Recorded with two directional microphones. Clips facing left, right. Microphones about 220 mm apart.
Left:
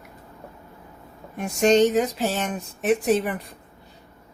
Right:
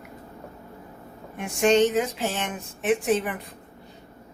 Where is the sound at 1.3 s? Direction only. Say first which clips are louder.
Left 2 dB; 40° left (ahead or behind).